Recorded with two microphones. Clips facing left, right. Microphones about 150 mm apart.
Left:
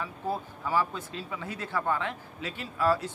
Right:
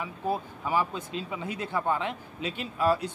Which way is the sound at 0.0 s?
15° right (ahead or behind).